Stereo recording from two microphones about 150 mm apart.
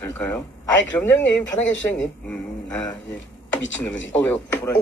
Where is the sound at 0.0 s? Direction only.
15° left (ahead or behind).